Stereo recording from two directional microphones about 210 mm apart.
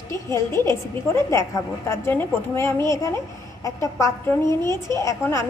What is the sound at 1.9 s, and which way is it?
A woman's voice, 10° left (ahead or behind).